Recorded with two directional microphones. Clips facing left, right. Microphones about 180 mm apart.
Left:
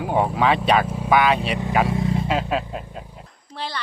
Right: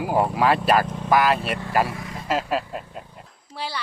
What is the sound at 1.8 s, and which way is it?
Vehicle, 25° left (ahead or behind).